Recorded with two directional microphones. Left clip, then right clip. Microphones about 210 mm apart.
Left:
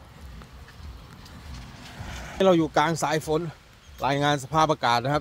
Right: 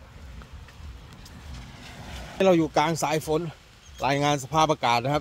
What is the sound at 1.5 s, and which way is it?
Vehicle, 5° left (ahead or behind).